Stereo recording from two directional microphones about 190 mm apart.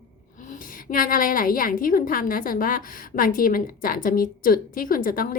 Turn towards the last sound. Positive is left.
turn(degrees=45)  # may be behind; listen again after turning